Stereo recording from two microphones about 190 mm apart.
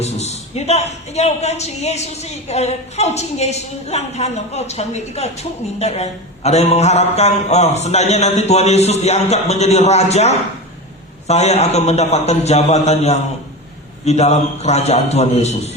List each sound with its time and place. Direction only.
0.0 s a woman's voice: 35° left (ahead or behind)